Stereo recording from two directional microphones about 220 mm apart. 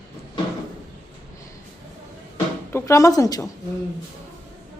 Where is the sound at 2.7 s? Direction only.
10° left (ahead or behind).